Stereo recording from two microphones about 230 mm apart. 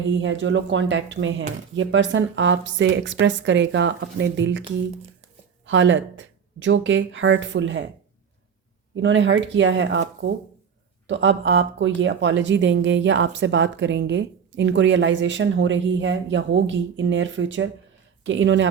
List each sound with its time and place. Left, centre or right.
0.2 s speech: right
5.6 s speech: right
9.0 s speech: right